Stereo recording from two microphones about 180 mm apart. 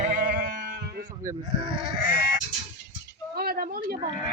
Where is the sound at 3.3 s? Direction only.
55° right (ahead or behind).